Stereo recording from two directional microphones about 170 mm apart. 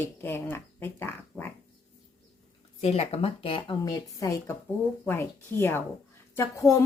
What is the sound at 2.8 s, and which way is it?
A woman's voice, 40° left (ahead or behind).